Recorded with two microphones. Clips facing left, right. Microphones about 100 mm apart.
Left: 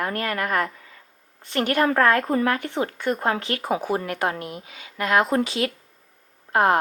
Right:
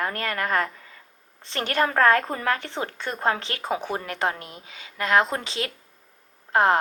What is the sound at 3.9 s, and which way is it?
Speech, 25° left (ahead or behind).